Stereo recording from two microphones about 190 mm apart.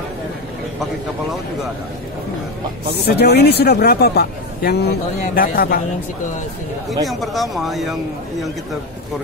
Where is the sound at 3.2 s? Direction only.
60° left (ahead or behind).